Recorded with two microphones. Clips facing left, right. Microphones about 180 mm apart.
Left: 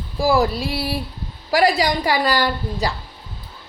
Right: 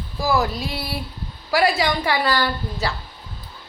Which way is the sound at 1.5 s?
35° left (ahead or behind).